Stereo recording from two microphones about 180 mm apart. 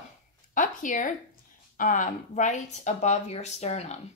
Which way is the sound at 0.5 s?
45° left (ahead or behind).